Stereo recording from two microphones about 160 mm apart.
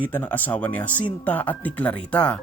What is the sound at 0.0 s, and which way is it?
Speech, 10° left (ahead or behind).